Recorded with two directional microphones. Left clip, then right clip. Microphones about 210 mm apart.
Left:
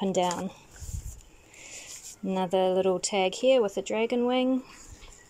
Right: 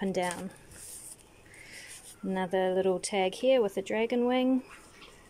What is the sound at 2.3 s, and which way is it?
Speech, 5° left (ahead or behind).